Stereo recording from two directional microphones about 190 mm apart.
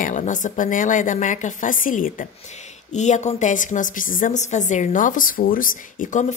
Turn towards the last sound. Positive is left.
turn(degrees=45)  # may be behind; listen again after turning